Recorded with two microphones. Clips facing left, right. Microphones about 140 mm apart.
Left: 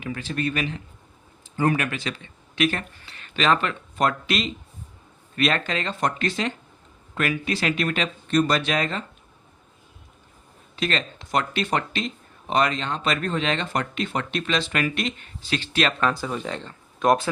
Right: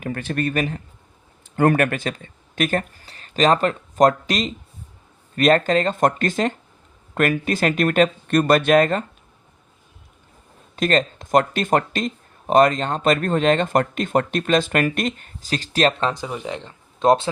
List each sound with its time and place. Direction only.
0.0 s speech: 55° right (ahead or behind)
1.5 s speech: 60° right (ahead or behind)
10.8 s speech: 45° right (ahead or behind)
16.0 s speech: 20° right (ahead or behind)